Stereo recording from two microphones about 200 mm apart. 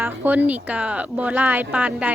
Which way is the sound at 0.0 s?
10° right (ahead or behind).